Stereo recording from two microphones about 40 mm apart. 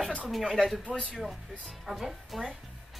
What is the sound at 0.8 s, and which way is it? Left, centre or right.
Speech, left.